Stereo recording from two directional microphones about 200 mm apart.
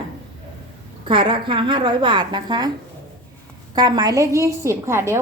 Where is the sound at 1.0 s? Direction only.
25° right (ahead or behind).